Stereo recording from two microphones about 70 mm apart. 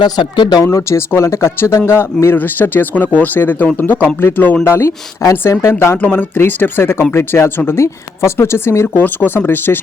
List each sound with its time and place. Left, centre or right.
0.0 s speech: left
0.6 s speech: left
6.0 s speech: left
9.0 s speech: left